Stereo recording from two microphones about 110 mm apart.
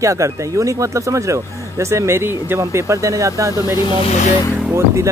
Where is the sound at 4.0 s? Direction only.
85° left.